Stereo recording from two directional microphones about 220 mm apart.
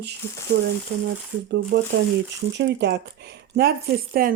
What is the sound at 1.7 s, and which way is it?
Speech, 50° right (ahead or behind).